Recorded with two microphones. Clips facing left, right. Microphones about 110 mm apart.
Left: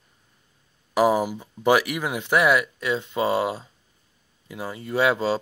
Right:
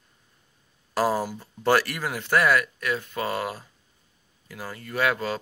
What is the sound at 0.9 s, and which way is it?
Speech, 15° left (ahead or behind).